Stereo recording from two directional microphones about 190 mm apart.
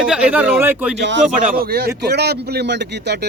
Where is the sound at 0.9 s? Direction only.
70° right (ahead or behind).